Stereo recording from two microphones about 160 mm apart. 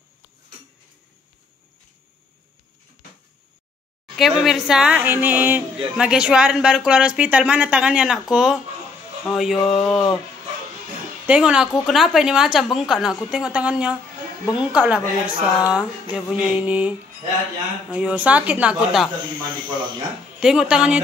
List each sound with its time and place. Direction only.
4.2 s a woman's voice: centre (ahead or behind)
11.2 s a woman's voice: 5° right (ahead or behind)
17.9 s a woman's voice: 10° right (ahead or behind)
19.5 s speech: 30° right (ahead or behind)
20.3 s a woman's voice: 5° right (ahead or behind)